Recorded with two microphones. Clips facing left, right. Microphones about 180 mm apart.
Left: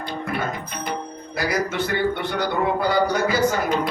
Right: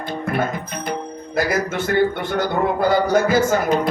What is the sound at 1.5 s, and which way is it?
A man's voice, 50° right (ahead or behind).